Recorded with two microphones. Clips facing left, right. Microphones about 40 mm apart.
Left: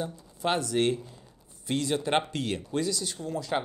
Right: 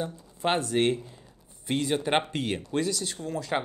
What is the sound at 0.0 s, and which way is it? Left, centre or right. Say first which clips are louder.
Speech: right 1 dB; right.